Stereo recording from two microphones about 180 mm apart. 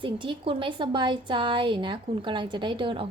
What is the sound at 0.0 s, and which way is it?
A woman's voice, 30° right (ahead or behind).